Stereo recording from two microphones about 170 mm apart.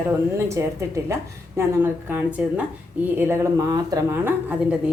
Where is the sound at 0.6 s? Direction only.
15° right (ahead or behind).